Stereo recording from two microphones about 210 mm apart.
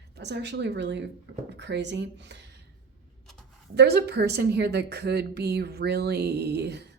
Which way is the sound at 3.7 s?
50° right (ahead or behind).